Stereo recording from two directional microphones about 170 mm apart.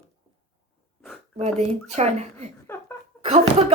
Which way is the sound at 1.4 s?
40° right (ahead or behind).